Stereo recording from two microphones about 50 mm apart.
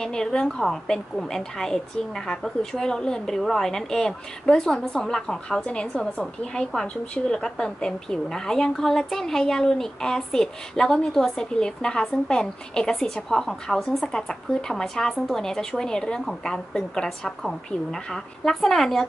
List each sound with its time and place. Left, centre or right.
0.0 s a woman's voice: centre